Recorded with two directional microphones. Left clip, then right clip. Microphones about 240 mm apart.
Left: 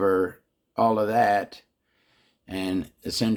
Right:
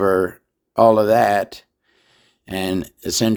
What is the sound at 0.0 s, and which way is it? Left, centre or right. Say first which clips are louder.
Speech: right 5 dB; right.